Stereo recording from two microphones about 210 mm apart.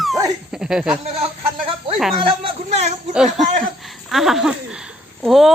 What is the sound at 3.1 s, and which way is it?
Speech, centre (ahead or behind).